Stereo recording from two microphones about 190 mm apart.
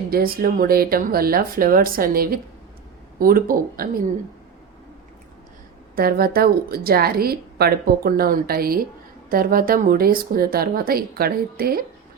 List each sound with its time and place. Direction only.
0.1 s speech: 50° right (ahead or behind)
6.0 s speech: 55° right (ahead or behind)